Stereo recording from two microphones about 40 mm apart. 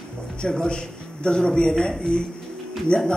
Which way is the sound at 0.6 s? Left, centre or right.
Left.